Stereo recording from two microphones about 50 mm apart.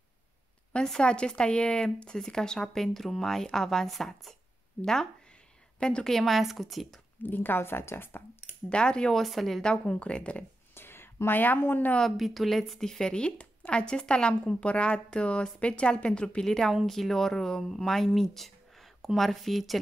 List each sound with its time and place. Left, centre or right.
0.8 s speech: centre
5.8 s speech: centre
7.2 s a woman's voice: left
8.6 s speech: centre
9.1 s speech: centre
9.6 s speech: centre
10.7 s a sound: left
12.2 s speech: centre